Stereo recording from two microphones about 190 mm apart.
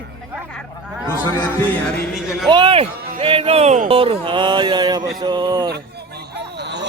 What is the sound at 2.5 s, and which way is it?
Speech, 30° right (ahead or behind).